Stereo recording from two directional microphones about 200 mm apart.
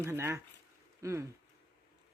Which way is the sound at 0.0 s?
15° right (ahead or behind).